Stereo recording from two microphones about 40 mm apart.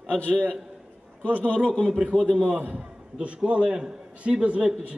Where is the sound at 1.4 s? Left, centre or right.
Left.